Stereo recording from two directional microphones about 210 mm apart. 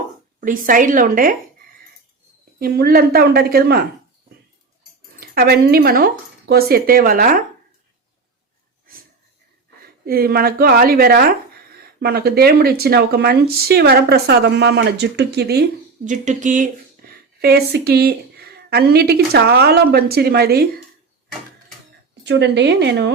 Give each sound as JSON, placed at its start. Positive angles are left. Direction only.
{"t": 0.3, "sound": "a woman's voice", "side_deg": -40}
{"t": 2.6, "sound": "speech", "side_deg": -45}
{"t": 5.2, "sound": "speech", "side_deg": -45}
{"t": 10.1, "sound": "speech", "side_deg": -45}
{"t": 16.0, "sound": "a woman's voice", "side_deg": -35}
{"t": 17.4, "sound": "speech", "side_deg": -50}
{"t": 22.2, "sound": "speech", "side_deg": -55}